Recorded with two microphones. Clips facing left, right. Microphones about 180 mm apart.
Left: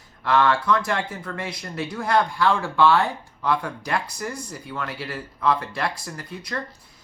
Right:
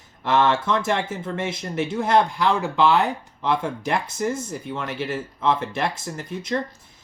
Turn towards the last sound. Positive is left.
turn(degrees=-20)  # may be behind; listen again after turning